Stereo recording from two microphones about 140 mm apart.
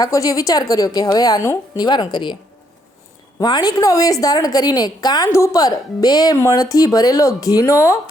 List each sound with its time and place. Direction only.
0.0 s a woman's voice: 25° left (ahead or behind)
3.4 s a woman's voice: 30° left (ahead or behind)